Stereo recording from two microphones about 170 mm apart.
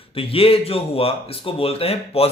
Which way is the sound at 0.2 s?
35° left (ahead or behind).